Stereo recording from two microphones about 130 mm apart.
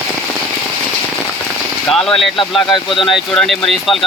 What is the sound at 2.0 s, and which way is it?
Speech, 5° left (ahead or behind).